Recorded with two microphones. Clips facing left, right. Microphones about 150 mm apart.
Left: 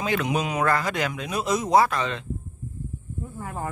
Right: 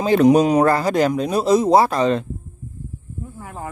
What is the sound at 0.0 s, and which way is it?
Speech, 35° right (ahead or behind).